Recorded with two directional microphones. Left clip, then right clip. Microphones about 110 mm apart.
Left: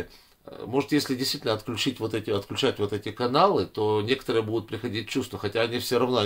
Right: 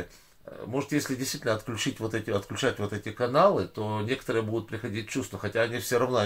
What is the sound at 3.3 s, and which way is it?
Speech, 30° left (ahead or behind).